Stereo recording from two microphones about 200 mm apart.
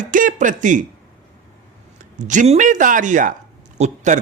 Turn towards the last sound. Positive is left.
turn(degrees=-35)  # may be behind; listen again after turning